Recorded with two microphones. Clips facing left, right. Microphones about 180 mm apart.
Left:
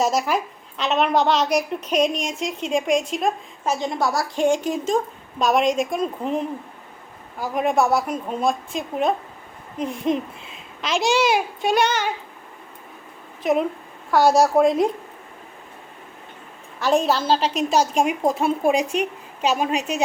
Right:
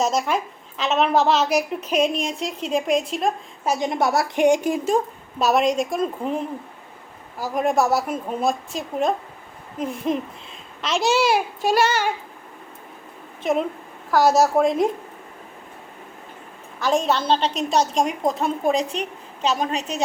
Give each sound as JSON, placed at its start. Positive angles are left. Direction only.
{"t": 0.0, "sound": "a woman's voice", "side_deg": 0}
{"t": 3.7, "sound": "a woman's voice", "side_deg": -20}
{"t": 13.4, "sound": "a woman's voice", "side_deg": 0}
{"t": 16.8, "sound": "a woman's voice", "side_deg": 0}